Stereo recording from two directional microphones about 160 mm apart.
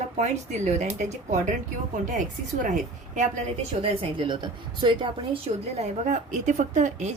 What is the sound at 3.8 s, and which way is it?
Speech, 30° right (ahead or behind).